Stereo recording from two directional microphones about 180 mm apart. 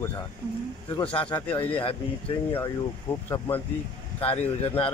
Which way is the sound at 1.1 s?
30° left (ahead or behind).